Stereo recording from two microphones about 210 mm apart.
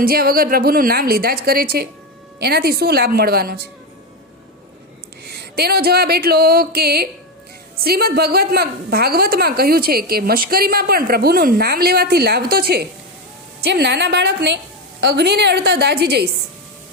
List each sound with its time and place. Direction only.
0.0 s a woman's voice: 45° right (ahead or behind)
5.2 s a sound: 50° right (ahead or behind)
7.9 s a woman's voice: 45° right (ahead or behind)